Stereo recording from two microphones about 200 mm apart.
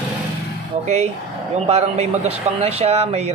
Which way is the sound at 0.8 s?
30° right (ahead or behind).